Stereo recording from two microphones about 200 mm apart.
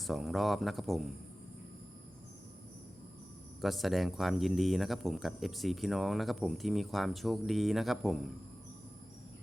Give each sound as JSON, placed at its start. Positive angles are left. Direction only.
{"t": 0.0, "sound": "speech", "side_deg": 0}
{"t": 3.6, "sound": "speech", "side_deg": 0}